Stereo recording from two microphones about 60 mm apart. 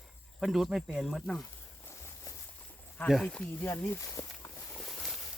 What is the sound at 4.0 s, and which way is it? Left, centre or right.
Speech, left.